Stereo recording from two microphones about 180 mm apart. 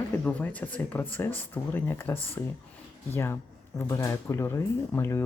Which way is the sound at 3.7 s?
15° left (ahead or behind).